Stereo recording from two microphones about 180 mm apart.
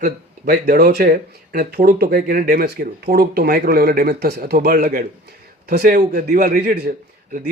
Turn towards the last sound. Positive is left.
turn(degrees=-55)  # may be behind; listen again after turning